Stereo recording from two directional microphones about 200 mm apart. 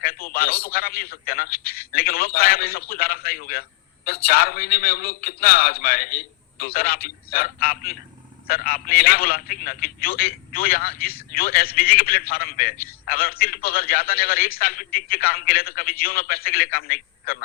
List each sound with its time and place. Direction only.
0.0 s a man's voice: 50° left (ahead or behind)